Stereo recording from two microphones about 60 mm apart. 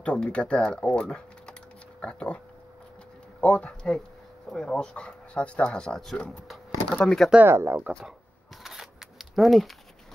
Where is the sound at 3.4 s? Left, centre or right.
Left.